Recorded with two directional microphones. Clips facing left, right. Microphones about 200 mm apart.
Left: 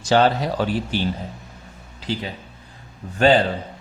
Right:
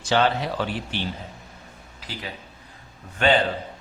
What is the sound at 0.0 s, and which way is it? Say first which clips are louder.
A man's voice: left 4 dB; 40° left (ahead or behind).